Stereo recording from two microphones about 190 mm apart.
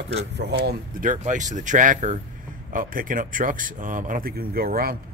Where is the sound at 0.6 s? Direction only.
45° right (ahead or behind).